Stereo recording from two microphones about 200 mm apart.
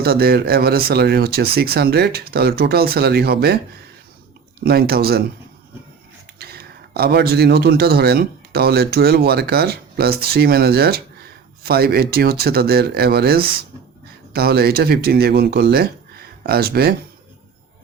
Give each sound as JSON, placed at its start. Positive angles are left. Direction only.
{"t": 0.0, "sound": "speech", "side_deg": -50}
{"t": 4.6, "sound": "speech", "side_deg": -50}
{"t": 6.4, "sound": "a man's voice", "side_deg": -50}